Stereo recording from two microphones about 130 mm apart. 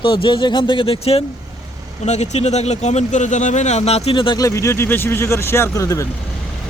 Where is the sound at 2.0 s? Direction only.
60° left (ahead or behind); by 4.3 s 40° left (ahead or behind).